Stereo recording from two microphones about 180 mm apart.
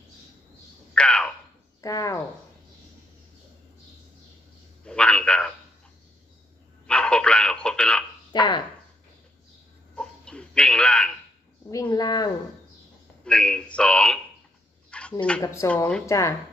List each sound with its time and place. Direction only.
0.9 s a sound: 5° left (ahead or behind)
1.8 s speech: 20° left (ahead or behind)
4.8 s a man's voice: 5° left (ahead or behind)
6.9 s telephone: 5° left (ahead or behind)
8.3 s speech: 25° left (ahead or behind)
9.9 s a sound: 5° left (ahead or behind)
11.7 s speech: 20° left (ahead or behind)
13.2 s a man's voice: 5° left (ahead or behind)
14.9 s a sound: 5° left (ahead or behind)
15.4 s a woman's voice: 15° left (ahead or behind)